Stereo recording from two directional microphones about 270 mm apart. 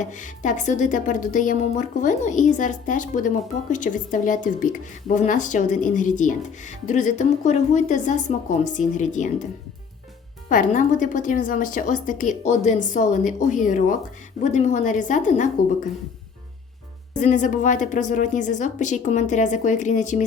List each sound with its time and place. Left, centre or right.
0.0 s a woman's voice: left
10.5 s a woman's voice: left
17.2 s a woman's voice: left